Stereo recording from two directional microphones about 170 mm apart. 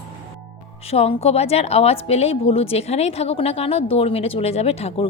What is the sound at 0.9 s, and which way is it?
A woman's voice, 35° left (ahead or behind).